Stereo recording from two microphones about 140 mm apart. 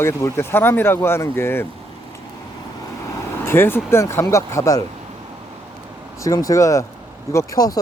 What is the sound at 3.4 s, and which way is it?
Speech, 15° left (ahead or behind).